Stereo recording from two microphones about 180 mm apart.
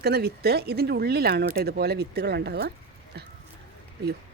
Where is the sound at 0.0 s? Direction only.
60° right (ahead or behind).